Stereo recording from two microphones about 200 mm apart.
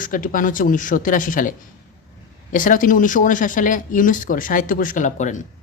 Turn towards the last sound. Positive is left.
turn(degrees=40)  # may be behind; listen again after turning